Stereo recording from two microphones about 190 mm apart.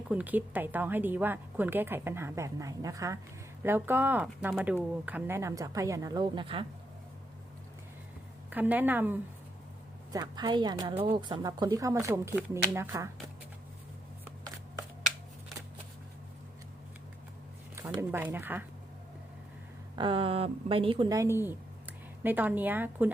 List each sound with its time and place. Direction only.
0.1 s a woman's voice: 10° right (ahead or behind); by 6.7 s 25° right (ahead or behind)
8.4 s a woman's voice: 10° right (ahead or behind)
10.1 s a woman's voice: 20° right (ahead or behind)
17.7 s a woman's voice: 10° right (ahead or behind)
20.0 s a woman's voice: 30° right (ahead or behind); by 23.1 s 10° right (ahead or behind)